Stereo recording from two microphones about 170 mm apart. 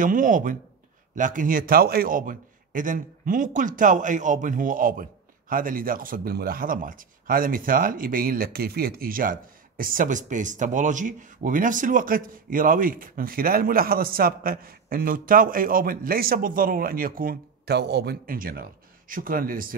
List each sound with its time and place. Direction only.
0.0 s a man's voice: 50° right (ahead or behind)